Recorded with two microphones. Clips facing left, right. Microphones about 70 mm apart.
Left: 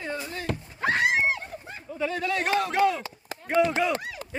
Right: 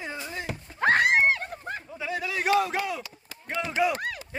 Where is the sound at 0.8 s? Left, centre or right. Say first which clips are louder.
Right 3 dB; right.